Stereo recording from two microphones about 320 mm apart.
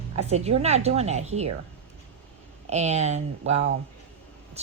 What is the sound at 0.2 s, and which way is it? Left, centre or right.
Speech, centre.